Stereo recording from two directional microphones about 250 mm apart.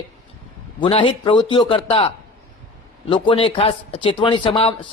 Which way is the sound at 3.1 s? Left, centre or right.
Centre.